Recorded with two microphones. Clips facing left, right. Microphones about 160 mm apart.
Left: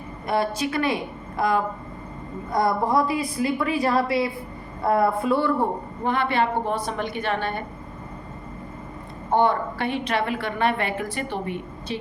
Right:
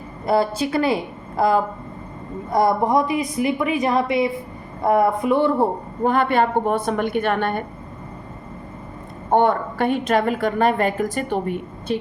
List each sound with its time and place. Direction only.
0.3 s a woman's voice: 30° right (ahead or behind)
6.1 s a woman's voice: 45° right (ahead or behind)
9.3 s a woman's voice: 50° right (ahead or behind)